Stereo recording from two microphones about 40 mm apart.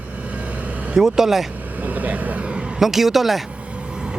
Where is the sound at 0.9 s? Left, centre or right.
Centre.